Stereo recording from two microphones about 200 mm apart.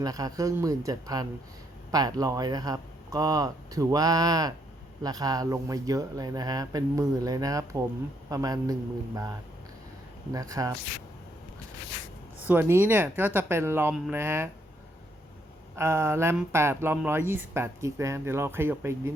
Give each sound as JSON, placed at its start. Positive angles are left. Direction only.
{"t": 0.0, "sound": "speech", "side_deg": -20}
{"t": 10.3, "sound": "speech", "side_deg": -15}
{"t": 12.5, "sound": "speech", "side_deg": -10}
{"t": 15.7, "sound": "speech", "side_deg": -15}